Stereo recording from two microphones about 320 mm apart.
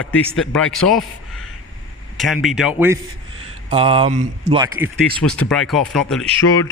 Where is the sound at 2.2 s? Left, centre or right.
Centre.